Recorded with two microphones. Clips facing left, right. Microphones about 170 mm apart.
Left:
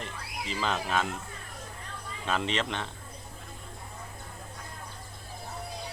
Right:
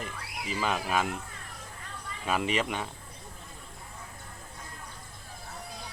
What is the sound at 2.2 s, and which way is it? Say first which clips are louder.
Speech: right 1 dB; 10° right (ahead or behind).